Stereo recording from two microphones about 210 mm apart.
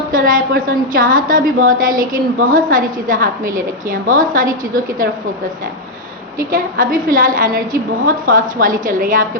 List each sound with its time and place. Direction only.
0.1 s a woman's voice: 40° right (ahead or behind)
6.5 s a woman's voice: 40° right (ahead or behind)